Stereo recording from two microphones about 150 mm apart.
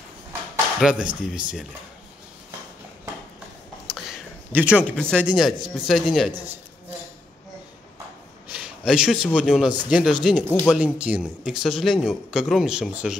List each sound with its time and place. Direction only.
0.7 s speech: 5° right (ahead or behind)
3.8 s a sound: 5° right (ahead or behind)
4.8 s speech: 5° left (ahead or behind)
6.3 s speech: 10° right (ahead or behind)
8.5 s speech: 5° right (ahead or behind)